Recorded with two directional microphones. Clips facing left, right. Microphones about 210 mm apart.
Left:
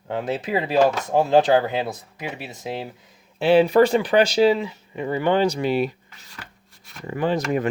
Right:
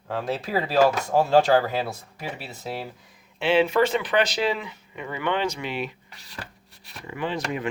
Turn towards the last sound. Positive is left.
turn(degrees=45)  # may be behind; listen again after turning